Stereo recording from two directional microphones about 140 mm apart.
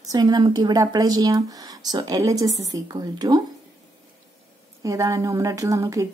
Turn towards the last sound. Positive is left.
turn(degrees=-20)  # may be behind; listen again after turning